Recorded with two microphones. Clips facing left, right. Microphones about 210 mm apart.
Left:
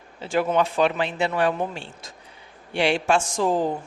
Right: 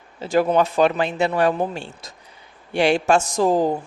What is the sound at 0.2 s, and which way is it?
A woman's voice, 40° right (ahead or behind).